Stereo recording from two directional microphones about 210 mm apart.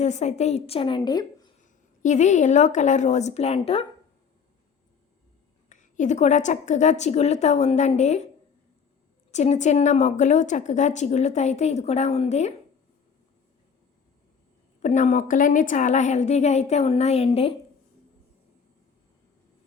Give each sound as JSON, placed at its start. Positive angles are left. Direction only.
{"t": 0.0, "sound": "a woman's voice", "side_deg": 35}
{"t": 1.6, "sound": "a woman's voice", "side_deg": 35}
{"t": 5.6, "sound": "a woman's voice", "side_deg": 35}
{"t": 9.3, "sound": "a woman's voice", "side_deg": 30}
{"t": 14.8, "sound": "a woman's voice", "side_deg": 35}